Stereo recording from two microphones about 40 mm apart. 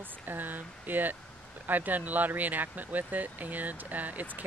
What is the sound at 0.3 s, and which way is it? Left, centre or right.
Speech, right.